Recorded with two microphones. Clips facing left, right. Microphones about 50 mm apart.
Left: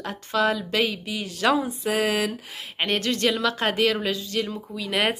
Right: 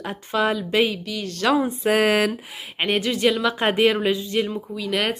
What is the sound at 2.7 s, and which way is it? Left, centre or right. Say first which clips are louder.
Speech: right 2 dB; centre.